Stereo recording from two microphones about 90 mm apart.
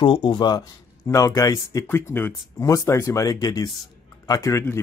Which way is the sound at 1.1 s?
40° left (ahead or behind).